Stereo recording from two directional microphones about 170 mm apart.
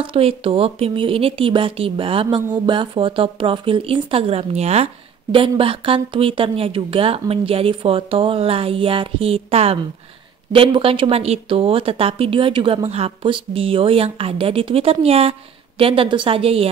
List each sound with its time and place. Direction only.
0.0 s a woman's voice: 35° right (ahead or behind)